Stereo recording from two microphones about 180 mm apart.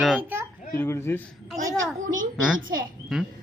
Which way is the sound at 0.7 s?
15° left (ahead or behind).